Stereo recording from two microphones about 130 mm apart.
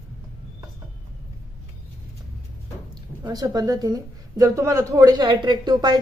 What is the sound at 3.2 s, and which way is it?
A woman's voice, 30° right (ahead or behind).